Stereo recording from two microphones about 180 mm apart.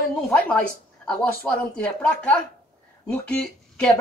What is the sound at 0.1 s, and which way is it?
Speech, 5° left (ahead or behind).